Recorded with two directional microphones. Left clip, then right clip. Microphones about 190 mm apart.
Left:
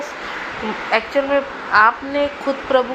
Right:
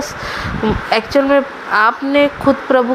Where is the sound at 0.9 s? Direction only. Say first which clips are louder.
Right 4 dB; 65° right (ahead or behind).